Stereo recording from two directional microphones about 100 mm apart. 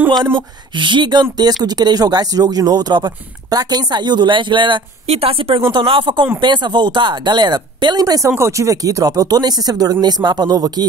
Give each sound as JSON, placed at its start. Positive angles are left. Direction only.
{"t": 0.7, "sound": "speech", "side_deg": -55}
{"t": 5.0, "sound": "speech", "side_deg": -80}